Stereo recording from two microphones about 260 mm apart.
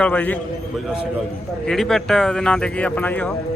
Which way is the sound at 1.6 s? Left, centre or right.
Centre.